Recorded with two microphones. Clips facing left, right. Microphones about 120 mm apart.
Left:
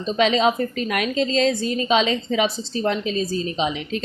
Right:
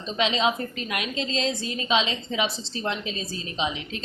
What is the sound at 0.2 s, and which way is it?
A woman's voice, 45° left (ahead or behind).